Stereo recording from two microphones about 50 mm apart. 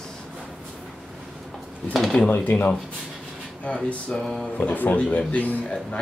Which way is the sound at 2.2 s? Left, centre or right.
Left.